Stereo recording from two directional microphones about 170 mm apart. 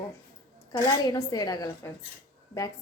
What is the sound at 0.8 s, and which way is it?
A woman's voice, 25° left (ahead or behind).